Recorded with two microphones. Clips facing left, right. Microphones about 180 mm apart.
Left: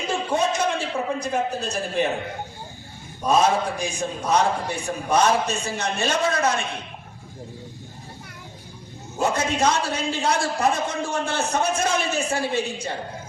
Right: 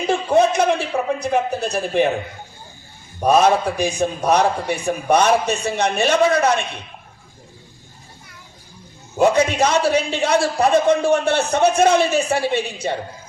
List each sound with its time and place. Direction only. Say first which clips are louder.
0.1 s a sound: right 7 dB; 65° right (ahead or behind)
3.2 s a man's voice: right 5 dB; 70° right (ahead or behind)
9.1 s a man's voice: right 8 dB; 70° right (ahead or behind)